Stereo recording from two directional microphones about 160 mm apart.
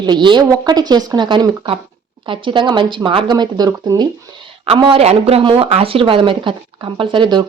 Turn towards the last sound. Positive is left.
turn(degrees=-30)  # may be behind; listen again after turning